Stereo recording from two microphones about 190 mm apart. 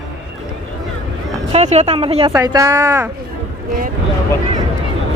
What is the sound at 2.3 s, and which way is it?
Speech, 20° right (ahead or behind).